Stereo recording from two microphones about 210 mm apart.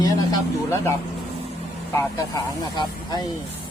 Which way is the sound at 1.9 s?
10° left (ahead or behind).